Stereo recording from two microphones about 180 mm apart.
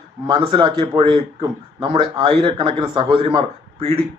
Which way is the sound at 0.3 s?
25° right (ahead or behind).